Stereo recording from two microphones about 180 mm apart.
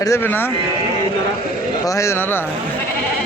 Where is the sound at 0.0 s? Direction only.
15° left (ahead or behind).